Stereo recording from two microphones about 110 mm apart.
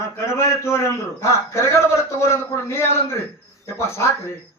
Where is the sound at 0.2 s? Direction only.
25° left (ahead or behind).